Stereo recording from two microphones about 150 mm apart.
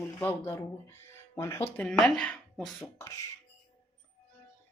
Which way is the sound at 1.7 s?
5° left (ahead or behind).